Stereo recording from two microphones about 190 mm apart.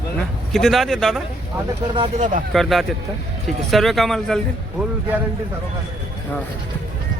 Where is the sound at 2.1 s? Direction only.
40° right (ahead or behind).